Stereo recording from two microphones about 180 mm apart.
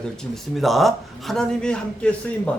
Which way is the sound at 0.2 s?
Centre (ahead or behind).